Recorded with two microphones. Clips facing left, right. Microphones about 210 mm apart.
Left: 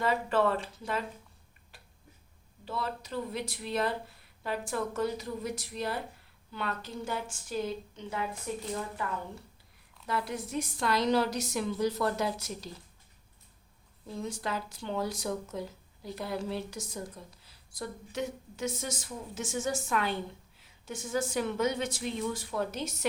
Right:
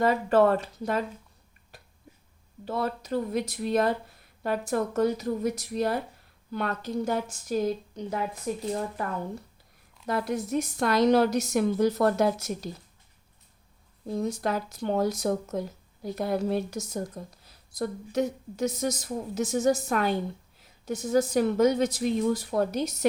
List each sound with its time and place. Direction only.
0.0 s speech: 45° right (ahead or behind)
2.6 s a woman's voice: 45° right (ahead or behind)
14.1 s a woman's voice: 40° right (ahead or behind)